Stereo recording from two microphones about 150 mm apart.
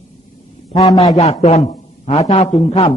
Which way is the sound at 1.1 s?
45° left (ahead or behind).